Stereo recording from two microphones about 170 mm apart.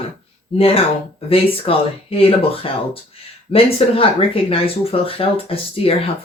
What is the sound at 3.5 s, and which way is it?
Speech, 35° left (ahead or behind).